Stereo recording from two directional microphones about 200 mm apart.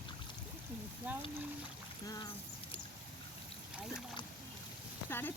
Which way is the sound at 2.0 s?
20° left (ahead or behind).